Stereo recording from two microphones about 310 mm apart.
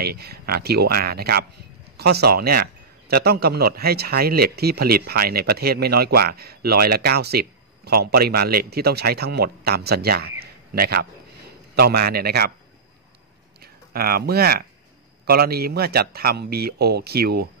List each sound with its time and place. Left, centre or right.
0.0 s a man's voice: right
13.6 s speech: right